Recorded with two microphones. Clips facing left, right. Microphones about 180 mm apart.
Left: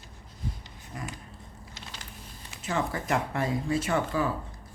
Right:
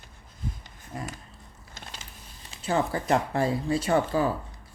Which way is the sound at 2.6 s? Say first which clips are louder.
Right 4 dB; 30° right (ahead or behind).